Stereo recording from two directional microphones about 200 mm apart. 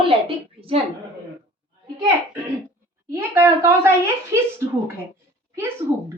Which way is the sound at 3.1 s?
15° right (ahead or behind).